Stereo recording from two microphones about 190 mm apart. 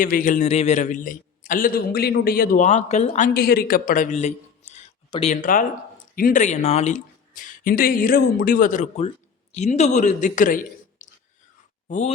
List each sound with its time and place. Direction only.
0.0 s a man's voice: 45° left (ahead or behind)
3.2 s a man's voice: 50° left (ahead or behind)